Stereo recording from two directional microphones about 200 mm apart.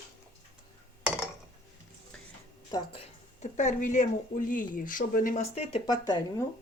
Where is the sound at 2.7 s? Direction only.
30° left (ahead or behind).